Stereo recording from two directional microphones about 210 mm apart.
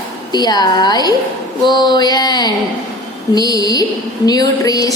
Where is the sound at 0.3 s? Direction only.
20° left (ahead or behind).